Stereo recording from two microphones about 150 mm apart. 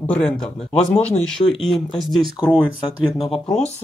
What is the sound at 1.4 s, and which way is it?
Speech, 35° left (ahead or behind).